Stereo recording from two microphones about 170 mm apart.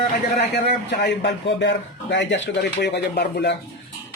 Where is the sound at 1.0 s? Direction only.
90° left.